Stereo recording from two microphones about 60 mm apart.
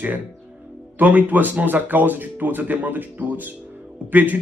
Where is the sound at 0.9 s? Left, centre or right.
Right.